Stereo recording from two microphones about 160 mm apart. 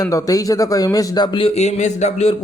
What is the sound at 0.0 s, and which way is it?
Speech, 20° left (ahead or behind).